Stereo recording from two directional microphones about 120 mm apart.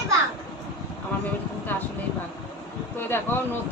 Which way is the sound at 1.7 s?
15° left (ahead or behind).